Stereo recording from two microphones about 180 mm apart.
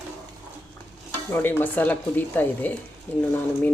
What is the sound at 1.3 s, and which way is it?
Speech, 10° left (ahead or behind).